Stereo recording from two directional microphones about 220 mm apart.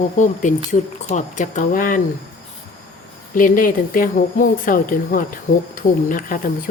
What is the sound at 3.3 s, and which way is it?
Speech, 35° left (ahead or behind).